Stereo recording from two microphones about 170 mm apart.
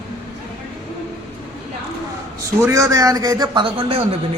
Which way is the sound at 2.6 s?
20° right (ahead or behind).